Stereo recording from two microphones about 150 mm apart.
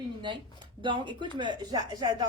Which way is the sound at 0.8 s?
30° right (ahead or behind).